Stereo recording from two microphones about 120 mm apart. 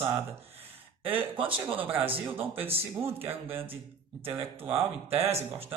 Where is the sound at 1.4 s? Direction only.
45° right (ahead or behind).